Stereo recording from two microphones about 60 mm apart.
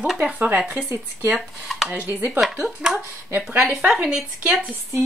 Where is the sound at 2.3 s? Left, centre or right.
Centre.